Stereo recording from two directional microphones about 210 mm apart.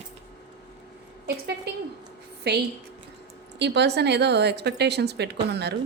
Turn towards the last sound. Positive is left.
turn(degrees=-50)  # may be behind; listen again after turning